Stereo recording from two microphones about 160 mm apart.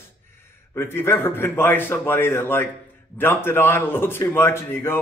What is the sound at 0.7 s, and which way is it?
A man's voice, 15° left (ahead or behind).